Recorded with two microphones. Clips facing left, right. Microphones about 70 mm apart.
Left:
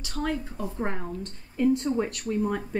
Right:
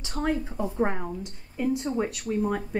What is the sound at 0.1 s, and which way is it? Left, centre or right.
A woman's voice, right.